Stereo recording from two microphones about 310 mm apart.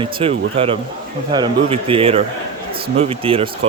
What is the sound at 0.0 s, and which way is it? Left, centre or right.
A man's voice, centre.